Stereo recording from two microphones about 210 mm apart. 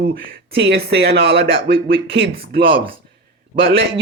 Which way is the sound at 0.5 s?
50° right (ahead or behind).